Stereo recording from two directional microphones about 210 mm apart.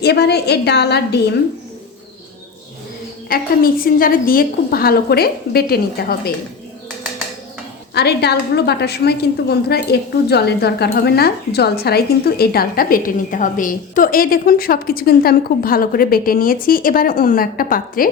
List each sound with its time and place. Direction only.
0.0 s a woman's voice: 50° left (ahead or behind)
3.2 s a woman's voice: 45° left (ahead or behind)
7.9 s a woman's voice: 50° left (ahead or behind)